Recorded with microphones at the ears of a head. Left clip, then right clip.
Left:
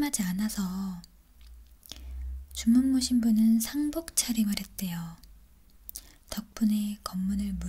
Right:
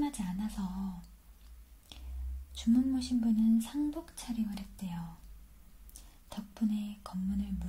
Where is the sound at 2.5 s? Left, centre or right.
Left.